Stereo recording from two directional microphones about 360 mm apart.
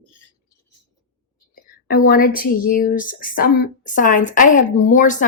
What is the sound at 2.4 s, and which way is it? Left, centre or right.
A woman's voice, left.